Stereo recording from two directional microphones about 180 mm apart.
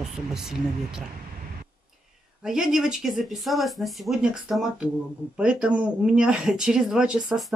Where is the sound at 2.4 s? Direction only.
5° right (ahead or behind).